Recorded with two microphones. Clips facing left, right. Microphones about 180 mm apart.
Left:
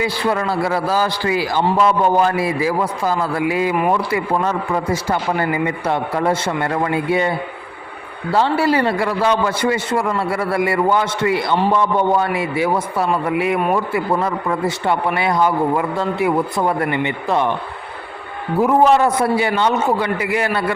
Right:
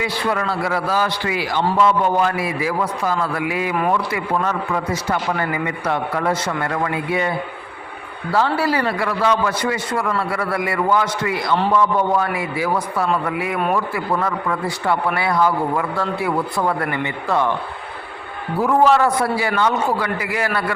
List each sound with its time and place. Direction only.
0.0 s a man's voice: 30° left (ahead or behind)
18.6 s a man's voice: 20° left (ahead or behind)